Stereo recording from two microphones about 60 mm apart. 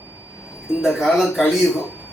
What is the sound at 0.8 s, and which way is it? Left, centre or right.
Speech, centre.